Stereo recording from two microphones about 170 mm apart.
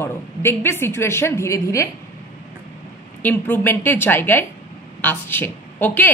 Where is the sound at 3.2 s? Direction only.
10° left (ahead or behind).